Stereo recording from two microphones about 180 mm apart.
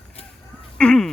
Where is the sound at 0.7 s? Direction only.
5° left (ahead or behind).